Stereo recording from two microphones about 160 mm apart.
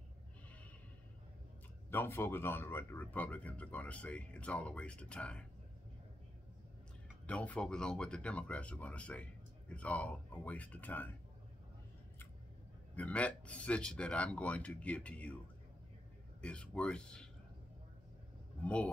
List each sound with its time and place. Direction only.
1.9 s speech: 15° left (ahead or behind)
7.2 s speech: 10° left (ahead or behind)
12.9 s speech: 10° left (ahead or behind)
16.3 s speech: 5° left (ahead or behind)
18.6 s speech: 10° left (ahead or behind)